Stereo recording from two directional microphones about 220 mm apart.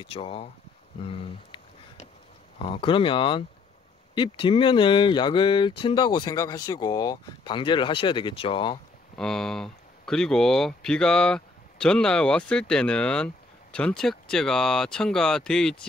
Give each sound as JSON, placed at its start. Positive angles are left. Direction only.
{"t": 0.0, "sound": "speech", "side_deg": 25}
{"t": 1.0, "sound": "a sound", "side_deg": 25}
{"t": 2.6, "sound": "speech", "side_deg": 25}
{"t": 9.1, "sound": "speech", "side_deg": 0}